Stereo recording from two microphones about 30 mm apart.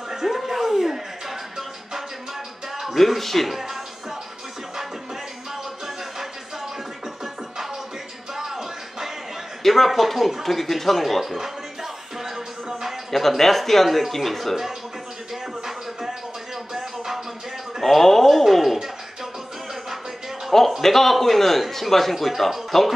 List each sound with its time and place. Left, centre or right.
0.1 s a sound: centre
3.0 s speech: centre
8.4 s music: centre
9.6 s speech: centre
13.4 s a man's voice: centre
15.6 s music: centre
17.8 s speech: centre
18.4 s a sound: centre
20.8 s a man's voice: centre
22.1 s speech: centre
22.7 s speech: centre